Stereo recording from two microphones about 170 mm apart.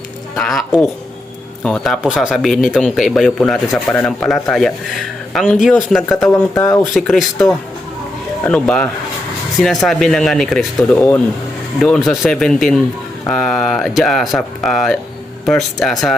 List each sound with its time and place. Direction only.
0.3 s speech: centre (ahead or behind)
1.6 s speech: centre (ahead or behind)
6.5 s speech: 20° left (ahead or behind)
6.8 s speech: centre (ahead or behind)
8.4 s speech: 5° left (ahead or behind)